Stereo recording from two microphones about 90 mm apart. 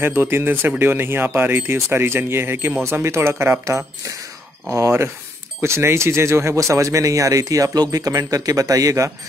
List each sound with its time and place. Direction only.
0.0 s speech: 25° right (ahead or behind)